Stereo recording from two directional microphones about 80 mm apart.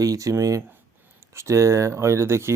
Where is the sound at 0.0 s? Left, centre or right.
Right.